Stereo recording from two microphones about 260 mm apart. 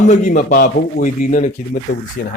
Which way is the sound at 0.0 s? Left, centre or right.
Left.